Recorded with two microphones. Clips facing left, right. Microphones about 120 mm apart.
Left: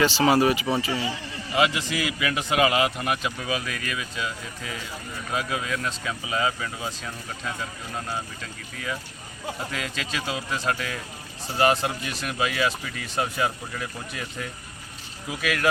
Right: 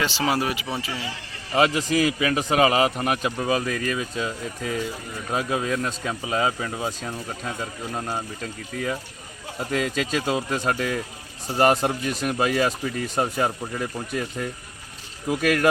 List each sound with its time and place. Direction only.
0.0 s speech: centre (ahead or behind)
1.5 s a man's voice: 40° right (ahead or behind)
9.7 s speech: 45° right (ahead or behind)